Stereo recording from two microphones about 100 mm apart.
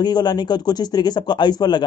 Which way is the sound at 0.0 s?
45° left (ahead or behind).